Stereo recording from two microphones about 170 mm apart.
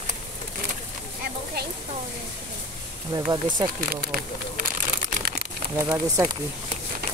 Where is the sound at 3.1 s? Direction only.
20° right (ahead or behind).